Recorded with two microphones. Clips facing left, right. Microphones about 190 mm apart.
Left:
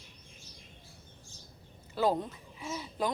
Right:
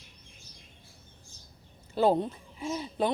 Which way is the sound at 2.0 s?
30° right (ahead or behind).